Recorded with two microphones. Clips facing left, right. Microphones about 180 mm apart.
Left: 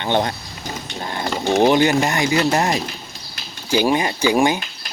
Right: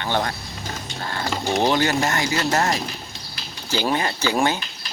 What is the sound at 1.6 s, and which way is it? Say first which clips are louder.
Speech: left 5 dB; 15° left (ahead or behind).